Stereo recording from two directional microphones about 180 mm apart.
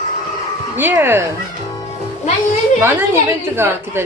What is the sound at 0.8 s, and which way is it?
Speech, 10° right (ahead or behind).